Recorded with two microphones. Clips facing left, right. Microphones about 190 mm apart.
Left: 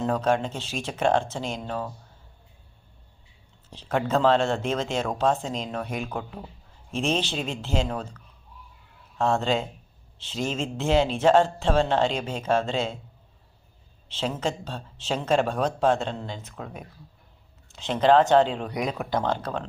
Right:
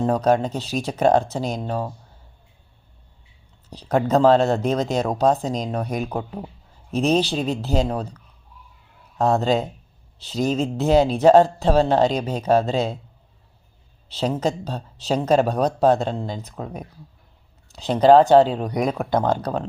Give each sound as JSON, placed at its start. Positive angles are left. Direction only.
{"t": 0.0, "sound": "speech", "side_deg": -35}
{"t": 3.7, "sound": "speech", "side_deg": -40}
{"t": 14.1, "sound": "speech", "side_deg": -40}